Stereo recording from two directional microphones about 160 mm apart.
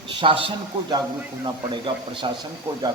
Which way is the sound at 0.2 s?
35° right (ahead or behind).